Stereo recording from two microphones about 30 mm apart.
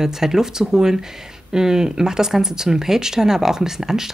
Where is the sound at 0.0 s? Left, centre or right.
Centre.